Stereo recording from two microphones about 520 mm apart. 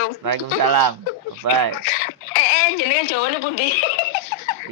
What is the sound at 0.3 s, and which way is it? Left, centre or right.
Speech, right.